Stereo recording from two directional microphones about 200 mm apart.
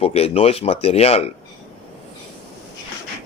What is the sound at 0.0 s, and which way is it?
Speech, 30° left (ahead or behind).